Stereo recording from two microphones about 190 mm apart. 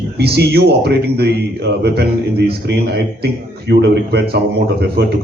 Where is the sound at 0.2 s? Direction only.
60° right (ahead or behind).